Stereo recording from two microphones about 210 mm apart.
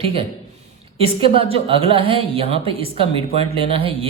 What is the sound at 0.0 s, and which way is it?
A woman's voice, 25° right (ahead or behind).